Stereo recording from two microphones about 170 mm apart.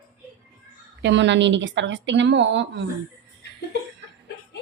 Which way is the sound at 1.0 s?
90° right.